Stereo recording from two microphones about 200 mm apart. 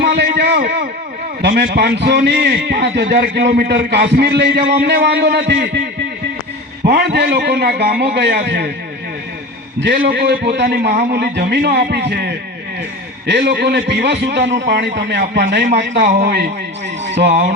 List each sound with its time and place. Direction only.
0.0 s a sound: 55° right (ahead or behind)
1.4 s a man's voice: 55° right (ahead or behind)
9.8 s a man's voice: 50° right (ahead or behind)